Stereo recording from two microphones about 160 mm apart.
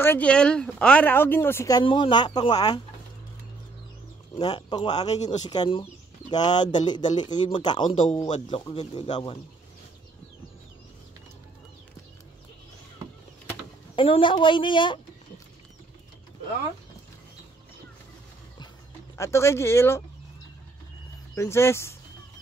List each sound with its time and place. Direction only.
0.0 s speech: 10° left (ahead or behind)
4.4 s speech: 30° left (ahead or behind)
5.1 s speech: 45° left (ahead or behind)
5.5 s speech: 30° left (ahead or behind)
13.9 s speech: 35° left (ahead or behind)
19.1 s speech: 20° left (ahead or behind)
21.4 s speech: 15° left (ahead or behind)